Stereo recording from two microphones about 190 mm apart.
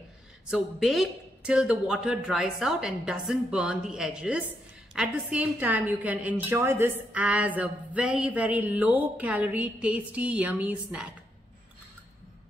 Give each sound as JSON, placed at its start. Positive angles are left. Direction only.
{"t": 0.5, "sound": "a woman's voice", "side_deg": 0}